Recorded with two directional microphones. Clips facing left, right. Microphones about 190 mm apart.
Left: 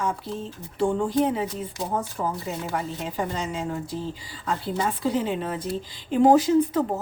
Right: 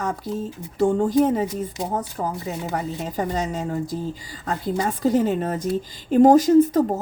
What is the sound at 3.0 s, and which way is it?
A woman's voice, 40° right (ahead or behind).